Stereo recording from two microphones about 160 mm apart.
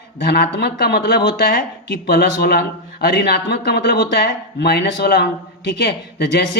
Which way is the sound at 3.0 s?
90° left.